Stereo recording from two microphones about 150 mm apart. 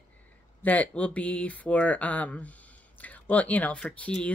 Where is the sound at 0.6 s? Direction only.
10° left (ahead or behind).